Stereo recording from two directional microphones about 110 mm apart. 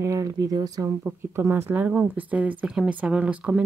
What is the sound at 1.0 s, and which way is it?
Speech, 20° right (ahead or behind).